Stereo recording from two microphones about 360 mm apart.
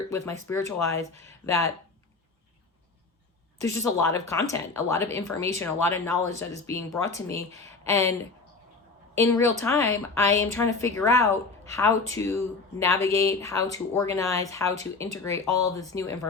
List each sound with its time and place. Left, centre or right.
0.1 s speech: centre
3.6 s speech: centre
9.1 s speech: centre